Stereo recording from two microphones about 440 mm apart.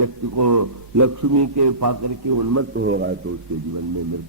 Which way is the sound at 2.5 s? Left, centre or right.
Right.